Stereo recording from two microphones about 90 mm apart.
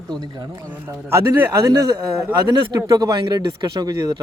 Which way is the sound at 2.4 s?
55° right (ahead or behind).